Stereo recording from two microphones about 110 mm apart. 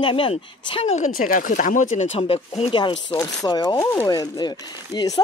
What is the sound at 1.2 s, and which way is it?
Speech, 90° left.